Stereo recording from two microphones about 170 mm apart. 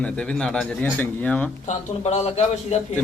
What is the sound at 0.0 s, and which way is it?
Speech, 5° left (ahead or behind).